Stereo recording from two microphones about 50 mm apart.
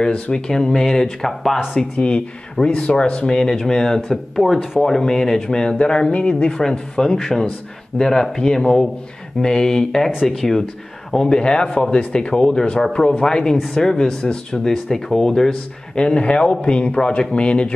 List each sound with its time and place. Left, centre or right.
0.0 s speech: centre